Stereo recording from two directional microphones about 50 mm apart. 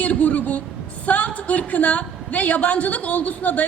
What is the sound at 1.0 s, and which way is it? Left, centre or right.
A woman's voice, left.